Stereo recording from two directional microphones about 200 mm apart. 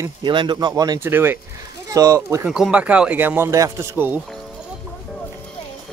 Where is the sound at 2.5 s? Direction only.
5° right (ahead or behind).